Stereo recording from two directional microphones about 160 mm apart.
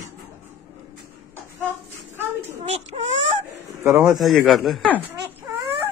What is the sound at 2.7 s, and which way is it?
Baby cry, 40° right (ahead or behind).